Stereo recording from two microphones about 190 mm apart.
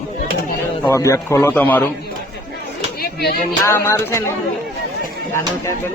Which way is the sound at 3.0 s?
55° left (ahead or behind).